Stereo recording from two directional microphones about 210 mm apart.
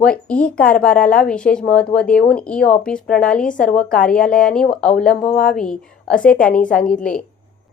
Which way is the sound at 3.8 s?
5° left (ahead or behind).